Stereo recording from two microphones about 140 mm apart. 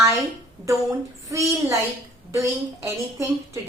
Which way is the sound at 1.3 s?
20° right (ahead or behind).